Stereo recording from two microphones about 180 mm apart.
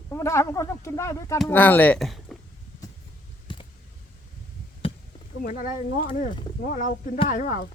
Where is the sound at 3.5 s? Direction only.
25° left (ahead or behind).